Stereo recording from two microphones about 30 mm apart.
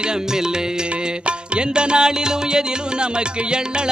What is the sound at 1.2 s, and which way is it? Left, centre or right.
Music, right.